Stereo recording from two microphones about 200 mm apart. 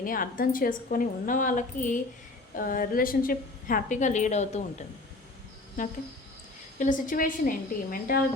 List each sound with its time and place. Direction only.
0.0 s a woman's voice: 45° left (ahead or behind)
6.7 s a woman's voice: 40° left (ahead or behind)